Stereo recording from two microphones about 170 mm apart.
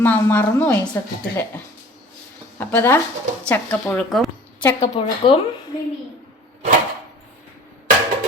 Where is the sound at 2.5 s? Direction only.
15° left (ahead or behind).